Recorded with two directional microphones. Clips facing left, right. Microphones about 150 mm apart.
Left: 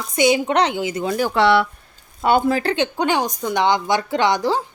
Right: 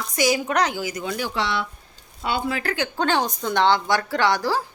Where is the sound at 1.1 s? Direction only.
55° left (ahead or behind).